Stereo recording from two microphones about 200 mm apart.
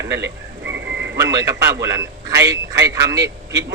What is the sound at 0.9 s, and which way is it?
Radio, 60° right (ahead or behind).